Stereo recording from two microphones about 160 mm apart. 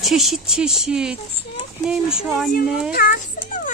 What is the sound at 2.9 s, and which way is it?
Speech, 70° left (ahead or behind).